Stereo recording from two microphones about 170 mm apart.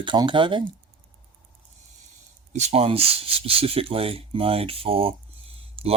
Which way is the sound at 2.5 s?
40° right (ahead or behind).